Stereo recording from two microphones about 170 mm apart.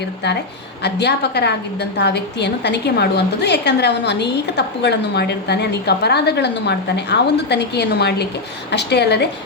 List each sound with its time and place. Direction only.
0.8 s a woman's voice: 85° left
8.7 s a woman's voice: 90° left